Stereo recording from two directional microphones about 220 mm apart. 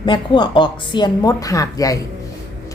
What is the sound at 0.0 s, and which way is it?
Speech, 20° left (ahead or behind).